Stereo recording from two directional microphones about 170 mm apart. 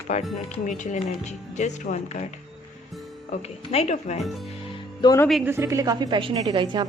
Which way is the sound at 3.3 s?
40° left (ahead or behind).